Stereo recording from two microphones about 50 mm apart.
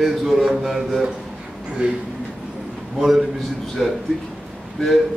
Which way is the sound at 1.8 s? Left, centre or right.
Right.